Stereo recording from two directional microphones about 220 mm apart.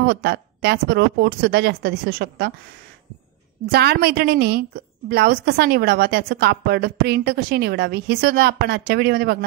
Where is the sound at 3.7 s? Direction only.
45° right (ahead or behind).